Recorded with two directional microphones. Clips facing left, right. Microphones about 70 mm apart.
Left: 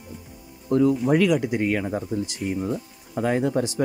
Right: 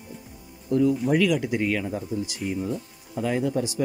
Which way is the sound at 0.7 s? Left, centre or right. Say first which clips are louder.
Left 2 dB; left.